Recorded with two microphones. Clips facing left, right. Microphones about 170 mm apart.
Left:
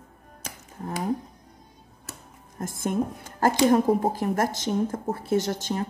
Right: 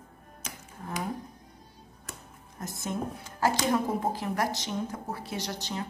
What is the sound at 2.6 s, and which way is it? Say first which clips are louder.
A woman's voice: left 7 dB; 50° left (ahead or behind).